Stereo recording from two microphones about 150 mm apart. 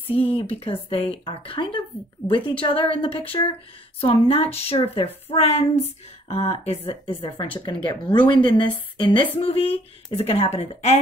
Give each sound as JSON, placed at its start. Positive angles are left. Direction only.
{"t": 0.1, "sound": "a woman's voice", "side_deg": 40}